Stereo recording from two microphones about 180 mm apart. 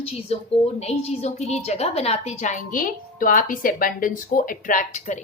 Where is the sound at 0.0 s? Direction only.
35° left (ahead or behind).